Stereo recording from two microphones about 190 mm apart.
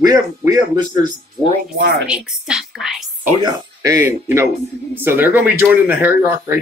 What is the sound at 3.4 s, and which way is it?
Speech, 15° right (ahead or behind).